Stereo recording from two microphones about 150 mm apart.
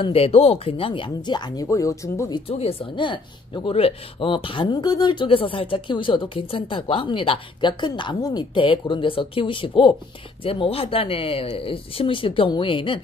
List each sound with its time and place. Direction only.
0.0 s speech: 40° left (ahead or behind); by 2.4 s 25° left (ahead or behind)
2.4 s speech: 40° left (ahead or behind)